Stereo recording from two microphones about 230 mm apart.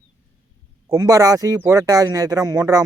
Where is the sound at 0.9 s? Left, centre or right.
Centre.